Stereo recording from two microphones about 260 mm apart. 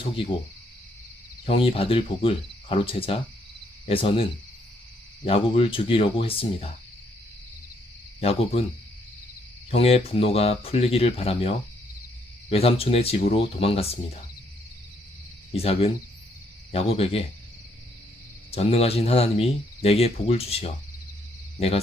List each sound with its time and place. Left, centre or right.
1.5 s speech: left
8.2 s speech: left
9.6 s speech: left
15.5 s speech: left
18.5 s speech: left